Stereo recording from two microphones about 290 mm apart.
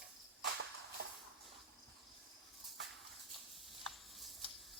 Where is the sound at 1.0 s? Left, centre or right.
Right.